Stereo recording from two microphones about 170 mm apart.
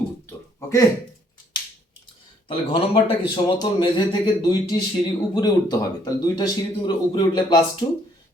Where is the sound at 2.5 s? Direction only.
30° left (ahead or behind).